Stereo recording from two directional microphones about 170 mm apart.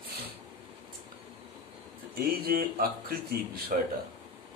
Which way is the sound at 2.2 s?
60° right (ahead or behind).